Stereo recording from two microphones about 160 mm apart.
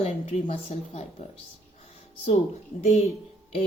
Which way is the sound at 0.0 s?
40° left (ahead or behind).